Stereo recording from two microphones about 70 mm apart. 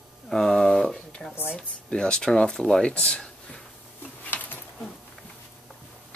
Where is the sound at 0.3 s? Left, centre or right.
Centre.